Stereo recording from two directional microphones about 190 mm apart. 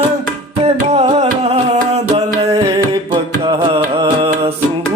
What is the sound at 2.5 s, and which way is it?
Music, 20° right (ahead or behind).